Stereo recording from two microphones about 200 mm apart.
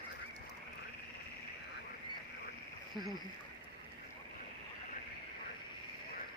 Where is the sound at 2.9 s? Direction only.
20° right (ahead or behind).